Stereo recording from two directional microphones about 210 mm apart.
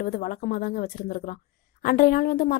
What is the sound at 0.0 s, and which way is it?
Speech, 40° left (ahead or behind).